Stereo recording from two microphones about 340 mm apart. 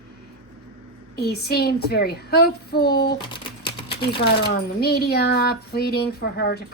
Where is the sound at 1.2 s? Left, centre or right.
Left.